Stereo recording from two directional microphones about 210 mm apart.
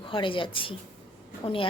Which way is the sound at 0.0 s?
25° left (ahead or behind).